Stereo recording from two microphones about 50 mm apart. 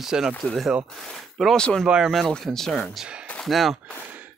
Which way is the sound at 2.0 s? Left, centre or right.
Centre.